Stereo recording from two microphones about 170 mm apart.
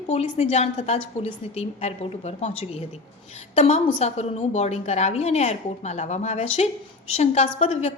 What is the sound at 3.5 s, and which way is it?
A woman's voice, 40° left (ahead or behind).